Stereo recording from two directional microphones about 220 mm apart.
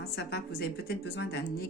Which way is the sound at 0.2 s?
45° left (ahead or behind).